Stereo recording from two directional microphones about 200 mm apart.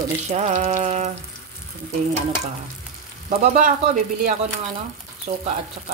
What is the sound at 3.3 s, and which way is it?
Speech, 40° right (ahead or behind).